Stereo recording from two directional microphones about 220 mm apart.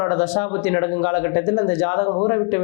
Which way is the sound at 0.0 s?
20° left (ahead or behind).